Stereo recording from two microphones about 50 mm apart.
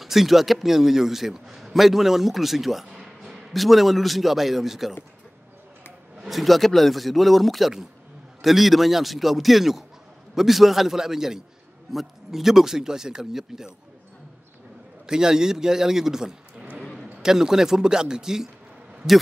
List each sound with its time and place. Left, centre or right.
0.0 s a man's voice: centre
6.2 s a man's voice: centre
15.0 s speech: centre
16.5 s a sound: right
17.2 s speech: centre